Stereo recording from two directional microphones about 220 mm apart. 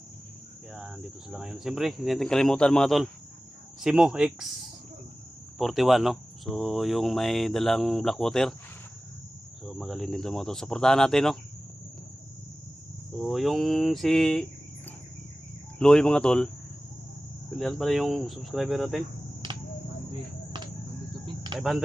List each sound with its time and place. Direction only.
0.7 s speech: centre (ahead or behind)
5.5 s speech: centre (ahead or behind)
9.6 s speech: centre (ahead or behind)
13.2 s speech: centre (ahead or behind)
15.8 s speech: 5° left (ahead or behind)
17.6 s speech: centre (ahead or behind)
21.5 s cricket: 20° right (ahead or behind)